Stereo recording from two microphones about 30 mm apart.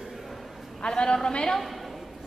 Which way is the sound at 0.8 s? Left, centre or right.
Left.